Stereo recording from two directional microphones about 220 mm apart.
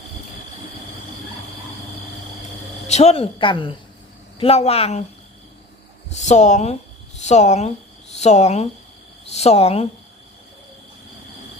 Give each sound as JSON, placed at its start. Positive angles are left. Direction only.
{"t": 2.8, "sound": "speech", "side_deg": 30}
{"t": 6.1, "sound": "speech", "side_deg": 30}